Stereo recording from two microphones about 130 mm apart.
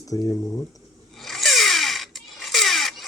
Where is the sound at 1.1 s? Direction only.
Centre (ahead or behind).